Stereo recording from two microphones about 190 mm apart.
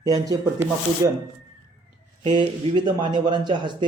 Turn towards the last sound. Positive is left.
turn(degrees=-25)  # may be behind; listen again after turning